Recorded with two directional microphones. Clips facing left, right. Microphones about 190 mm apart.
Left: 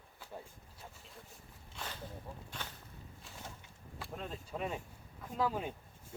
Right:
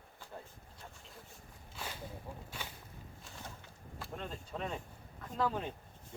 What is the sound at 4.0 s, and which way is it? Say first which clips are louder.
Speech: even; centre (ahead or behind).